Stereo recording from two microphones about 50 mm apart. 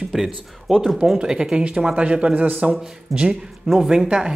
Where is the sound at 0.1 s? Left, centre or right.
Centre.